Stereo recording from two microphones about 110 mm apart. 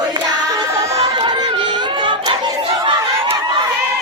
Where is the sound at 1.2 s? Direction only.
45° right (ahead or behind).